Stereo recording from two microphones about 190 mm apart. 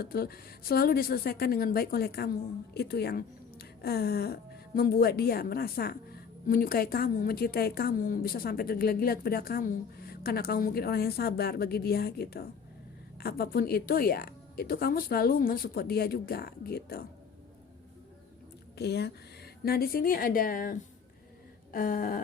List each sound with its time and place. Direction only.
0.0 s a woman's voice: 55° left (ahead or behind)
18.8 s a woman's voice: 60° left (ahead or behind)